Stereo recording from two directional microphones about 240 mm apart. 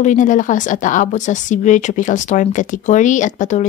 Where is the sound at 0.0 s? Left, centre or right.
Left.